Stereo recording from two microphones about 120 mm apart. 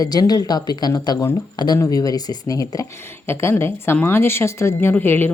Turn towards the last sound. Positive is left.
turn(degrees=15)  # may be behind; listen again after turning